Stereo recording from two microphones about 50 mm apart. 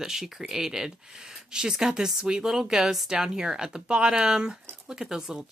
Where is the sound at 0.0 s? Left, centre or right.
Centre.